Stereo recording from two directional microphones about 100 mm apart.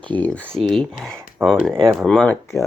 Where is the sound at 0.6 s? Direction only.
5° left (ahead or behind).